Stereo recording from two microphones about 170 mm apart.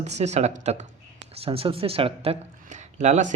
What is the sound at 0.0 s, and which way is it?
Speech, 40° right (ahead or behind).